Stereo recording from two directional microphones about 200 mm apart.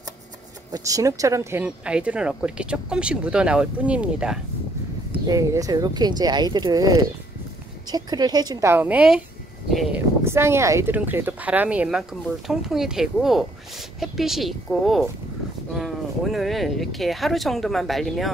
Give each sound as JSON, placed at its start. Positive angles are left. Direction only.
{"t": 0.7, "sound": "speech", "side_deg": -20}
{"t": 5.2, "sound": "a woman's voice", "side_deg": -15}